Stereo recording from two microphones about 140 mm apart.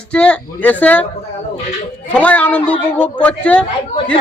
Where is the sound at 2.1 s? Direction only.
10° left (ahead or behind).